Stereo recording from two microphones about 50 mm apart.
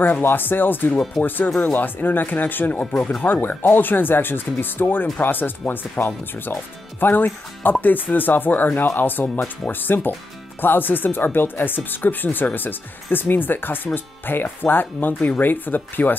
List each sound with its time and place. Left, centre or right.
0.0 s speech: left
2.9 s speech: centre
3.2 s speech: left